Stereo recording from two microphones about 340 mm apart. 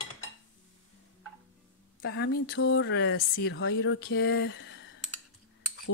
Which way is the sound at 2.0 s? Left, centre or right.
Left.